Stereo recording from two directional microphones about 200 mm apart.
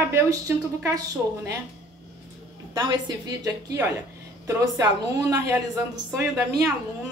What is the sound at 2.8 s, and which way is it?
A woman's voice, 20° right (ahead or behind).